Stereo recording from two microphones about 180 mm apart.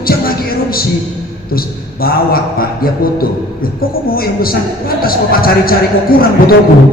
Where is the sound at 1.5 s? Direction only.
55° left (ahead or behind).